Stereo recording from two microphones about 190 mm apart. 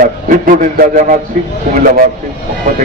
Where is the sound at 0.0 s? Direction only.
45° right (ahead or behind).